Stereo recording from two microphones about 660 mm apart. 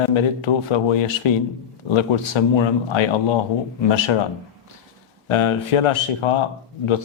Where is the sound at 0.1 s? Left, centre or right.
Left.